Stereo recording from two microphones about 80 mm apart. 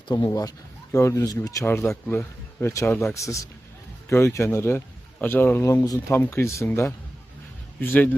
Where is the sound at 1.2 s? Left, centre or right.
Left.